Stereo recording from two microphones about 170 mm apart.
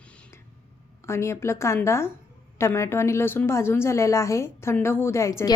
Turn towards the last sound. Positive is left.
turn(degrees=20)  # may be behind; listen again after turning